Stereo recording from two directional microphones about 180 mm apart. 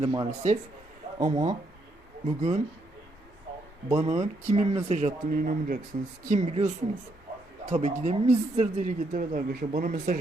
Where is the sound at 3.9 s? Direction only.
20° right (ahead or behind).